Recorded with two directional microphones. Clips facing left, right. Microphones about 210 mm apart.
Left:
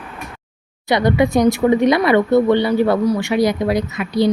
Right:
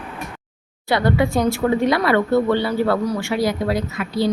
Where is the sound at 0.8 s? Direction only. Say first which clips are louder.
Left 3 dB; 15° left (ahead or behind).